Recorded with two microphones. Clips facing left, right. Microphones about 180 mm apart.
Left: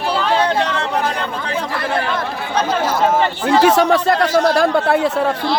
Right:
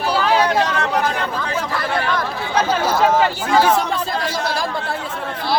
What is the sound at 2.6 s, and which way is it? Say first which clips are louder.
Speech: even; 5° right (ahead or behind).